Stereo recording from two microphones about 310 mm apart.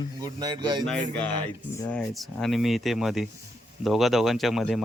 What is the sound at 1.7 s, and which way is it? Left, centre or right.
A man's voice, centre.